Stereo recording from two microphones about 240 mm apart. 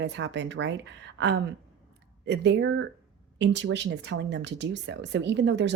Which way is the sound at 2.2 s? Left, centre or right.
Right.